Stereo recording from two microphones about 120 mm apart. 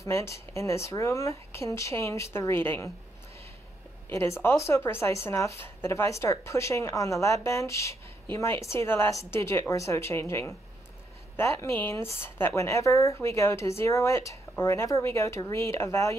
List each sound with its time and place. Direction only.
0.0 s speech: 25° left (ahead or behind)
4.1 s speech: 20° left (ahead or behind)